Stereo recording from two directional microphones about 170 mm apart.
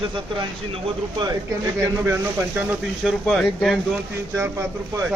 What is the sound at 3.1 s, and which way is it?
Speech, 5° left (ahead or behind).